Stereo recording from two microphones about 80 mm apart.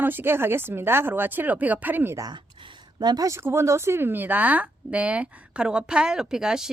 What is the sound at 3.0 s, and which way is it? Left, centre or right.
Speech, right.